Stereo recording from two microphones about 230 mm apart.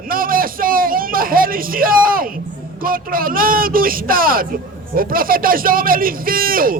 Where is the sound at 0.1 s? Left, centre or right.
Right.